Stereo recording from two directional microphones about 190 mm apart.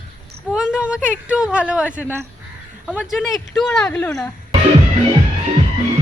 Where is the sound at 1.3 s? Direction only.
5° right (ahead or behind).